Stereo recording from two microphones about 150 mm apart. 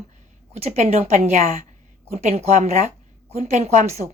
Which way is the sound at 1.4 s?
55° right (ahead or behind).